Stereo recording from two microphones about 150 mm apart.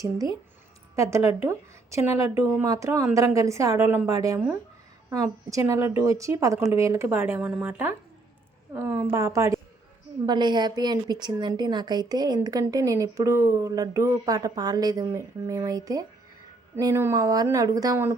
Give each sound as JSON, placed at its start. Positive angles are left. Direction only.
{"t": 0.0, "sound": "speech", "side_deg": -25}